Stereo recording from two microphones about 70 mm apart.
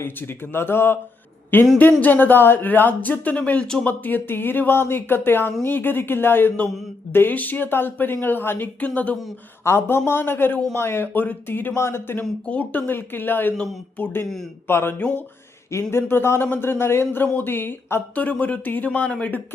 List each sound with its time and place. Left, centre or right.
0.0 s speech: left
9.6 s speech: left
11.7 s speech: left
12.5 s speech: left
14.9 s speech: centre
15.7 s speech: left
18.1 s speech: left